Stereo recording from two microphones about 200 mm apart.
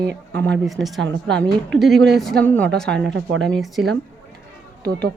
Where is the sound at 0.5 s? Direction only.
Centre (ahead or behind).